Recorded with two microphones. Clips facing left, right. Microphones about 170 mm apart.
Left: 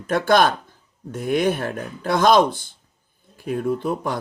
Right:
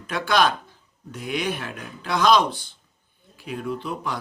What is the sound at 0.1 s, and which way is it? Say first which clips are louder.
Speech: left 4 dB; 50° left (ahead or behind).